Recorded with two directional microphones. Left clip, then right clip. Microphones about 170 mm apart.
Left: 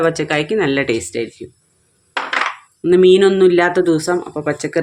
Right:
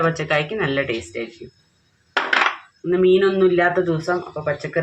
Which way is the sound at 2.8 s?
90° left.